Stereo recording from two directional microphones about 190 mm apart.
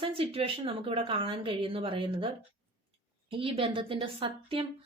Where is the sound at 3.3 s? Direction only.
30° right (ahead or behind).